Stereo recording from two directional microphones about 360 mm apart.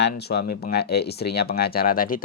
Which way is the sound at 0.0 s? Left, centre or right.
Left.